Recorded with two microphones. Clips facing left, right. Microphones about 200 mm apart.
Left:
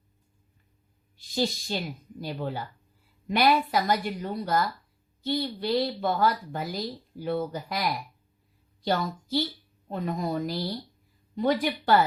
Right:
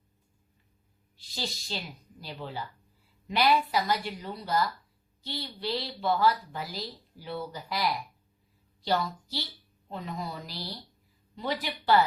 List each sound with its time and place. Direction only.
1.4 s a woman's voice: 50° left (ahead or behind)